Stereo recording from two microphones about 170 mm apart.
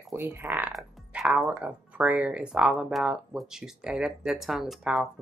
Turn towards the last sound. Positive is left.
turn(degrees=0)  # may be behind; listen again after turning